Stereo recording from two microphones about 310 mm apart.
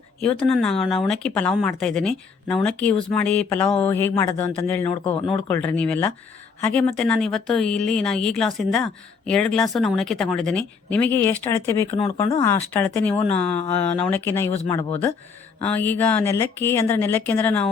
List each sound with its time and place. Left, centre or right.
0.2 s speech: centre
5.5 s speech: centre